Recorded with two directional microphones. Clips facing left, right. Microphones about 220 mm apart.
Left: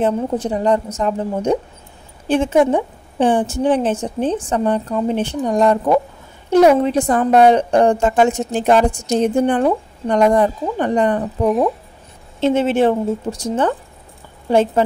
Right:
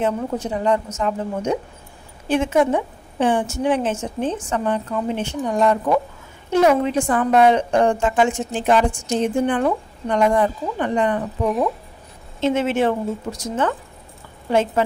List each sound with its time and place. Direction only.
0.0 s a woman's voice: 35° left (ahead or behind)